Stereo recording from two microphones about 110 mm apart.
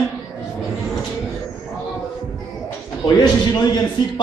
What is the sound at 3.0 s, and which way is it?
Speech, 45° left (ahead or behind).